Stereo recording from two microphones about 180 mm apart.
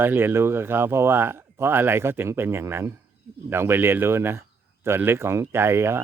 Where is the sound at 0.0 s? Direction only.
10° right (ahead or behind).